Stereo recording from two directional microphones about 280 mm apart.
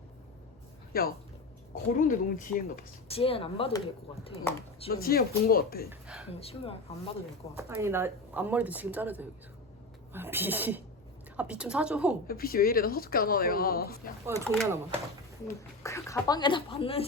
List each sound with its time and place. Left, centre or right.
0.9 s speech: left
4.9 s speech: left
5.9 s speech: centre
6.4 s speech: left
7.5 s speech: centre
12.3 s speech: left
14.3 s speech: centre
15.8 s speech: centre